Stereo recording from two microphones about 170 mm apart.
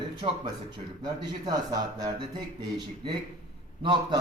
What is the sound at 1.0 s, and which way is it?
A man's voice, 25° right (ahead or behind).